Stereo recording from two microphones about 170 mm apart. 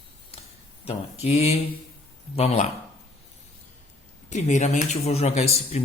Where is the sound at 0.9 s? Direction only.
40° left (ahead or behind).